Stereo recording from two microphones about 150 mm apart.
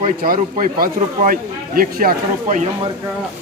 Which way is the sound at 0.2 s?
60° right (ahead or behind).